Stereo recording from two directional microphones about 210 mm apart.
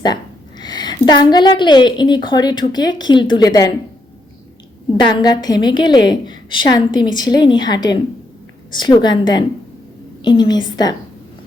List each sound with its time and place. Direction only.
0.6 s a woman's voice: 20° left (ahead or behind)
5.2 s a woman's voice: 20° left (ahead or behind)